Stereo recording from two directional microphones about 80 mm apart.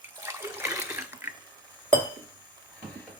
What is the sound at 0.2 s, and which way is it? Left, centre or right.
Water, right.